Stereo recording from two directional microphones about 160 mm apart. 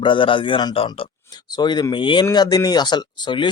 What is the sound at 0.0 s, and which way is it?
Speech, 30° left (ahead or behind).